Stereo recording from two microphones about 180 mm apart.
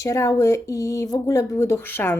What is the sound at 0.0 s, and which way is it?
A woman's voice, 15° left (ahead or behind).